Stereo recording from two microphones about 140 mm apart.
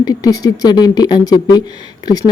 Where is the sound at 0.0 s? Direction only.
25° left (ahead or behind).